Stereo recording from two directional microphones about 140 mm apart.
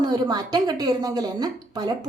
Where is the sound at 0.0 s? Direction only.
30° right (ahead or behind).